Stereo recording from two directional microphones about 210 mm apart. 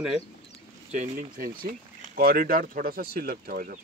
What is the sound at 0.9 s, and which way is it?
Speech, 40° right (ahead or behind).